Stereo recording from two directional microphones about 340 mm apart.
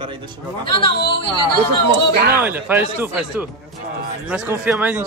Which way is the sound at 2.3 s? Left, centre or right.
Centre.